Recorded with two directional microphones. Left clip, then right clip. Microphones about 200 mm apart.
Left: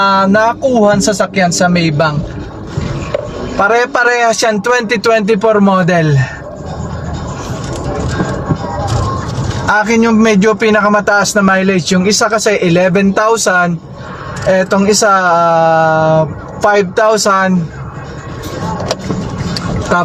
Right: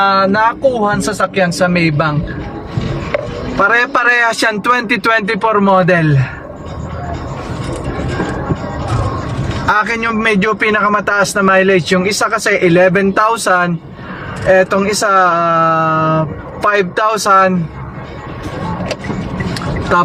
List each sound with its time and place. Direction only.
0.1 s a man's voice: 15° left (ahead or behind)
3.6 s a man's voice: 5° left (ahead or behind)
9.6 s a man's voice: 10° left (ahead or behind)